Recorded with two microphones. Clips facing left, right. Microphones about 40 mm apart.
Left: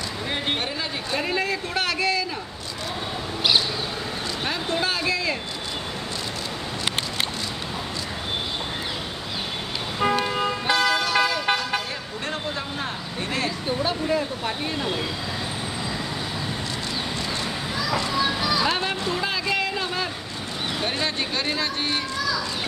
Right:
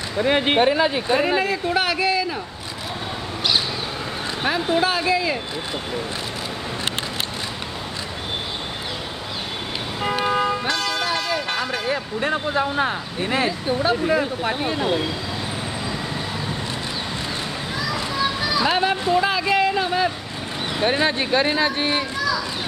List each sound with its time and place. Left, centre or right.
0.2 s speech: right
1.4 s speech: centre
4.4 s speech: centre
9.9 s vehicle: centre
10.7 s vehicle: centre
11.9 s speech: right
13.5 s speech: centre
14.0 s speech: centre
17.7 s children playing: centre
20.8 s speech: right